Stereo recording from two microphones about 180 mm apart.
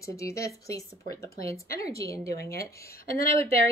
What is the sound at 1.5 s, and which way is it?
Speech, 55° left (ahead or behind).